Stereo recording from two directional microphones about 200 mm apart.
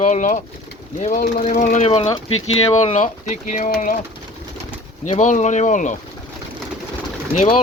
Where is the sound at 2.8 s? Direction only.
35° left (ahead or behind).